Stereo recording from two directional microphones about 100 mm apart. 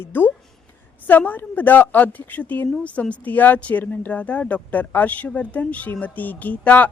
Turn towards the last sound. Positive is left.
turn(degrees=15)  # may be behind; listen again after turning